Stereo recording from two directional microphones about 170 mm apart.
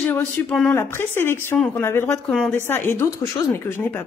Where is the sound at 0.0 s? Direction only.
10° left (ahead or behind).